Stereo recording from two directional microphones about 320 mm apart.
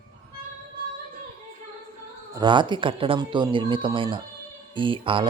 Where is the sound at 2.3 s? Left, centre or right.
Centre.